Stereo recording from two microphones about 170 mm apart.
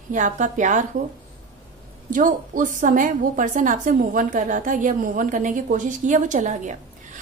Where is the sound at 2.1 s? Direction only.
50° right (ahead or behind).